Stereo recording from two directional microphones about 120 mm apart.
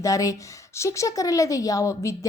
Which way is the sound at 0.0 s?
30° left (ahead or behind).